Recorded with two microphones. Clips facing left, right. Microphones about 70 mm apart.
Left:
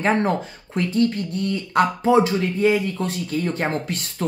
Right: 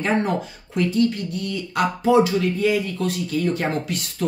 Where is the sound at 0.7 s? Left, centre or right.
Left.